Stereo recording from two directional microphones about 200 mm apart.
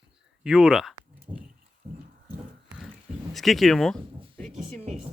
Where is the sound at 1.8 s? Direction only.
30° right (ahead or behind).